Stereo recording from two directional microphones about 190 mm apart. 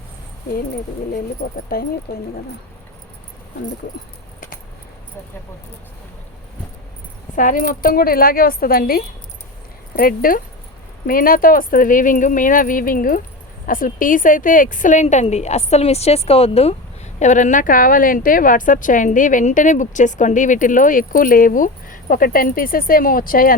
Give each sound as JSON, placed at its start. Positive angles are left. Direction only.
{"t": 1.1, "sound": "a woman's voice", "side_deg": 50}
{"t": 7.3, "sound": "a woman's voice", "side_deg": 45}